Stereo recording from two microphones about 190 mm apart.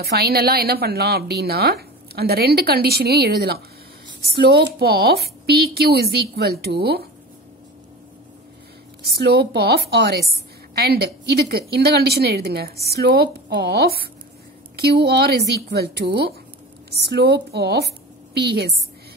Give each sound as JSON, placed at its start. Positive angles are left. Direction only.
{"t": 0.1, "sound": "a woman's voice", "side_deg": -55}
{"t": 9.0, "sound": "a woman's voice", "side_deg": -60}